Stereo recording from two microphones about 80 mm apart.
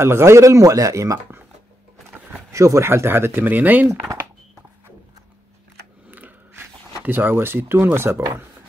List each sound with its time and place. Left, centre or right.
0.0 s speech: right
2.5 s speech: right
6.0 s a sound: right
7.1 s speech: right